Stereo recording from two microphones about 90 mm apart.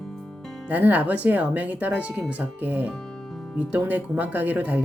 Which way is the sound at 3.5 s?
15° right (ahead or behind).